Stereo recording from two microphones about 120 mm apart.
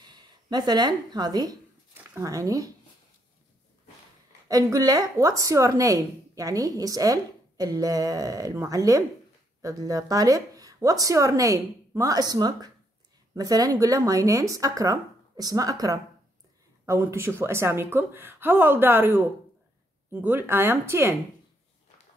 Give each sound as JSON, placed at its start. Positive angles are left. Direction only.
{"t": 0.0, "sound": "a woman's voice", "side_deg": -35}
{"t": 4.5, "sound": "a woman's voice", "side_deg": -30}